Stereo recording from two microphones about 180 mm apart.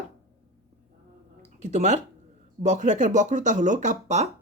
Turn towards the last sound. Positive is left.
turn(degrees=-40)  # may be behind; listen again after turning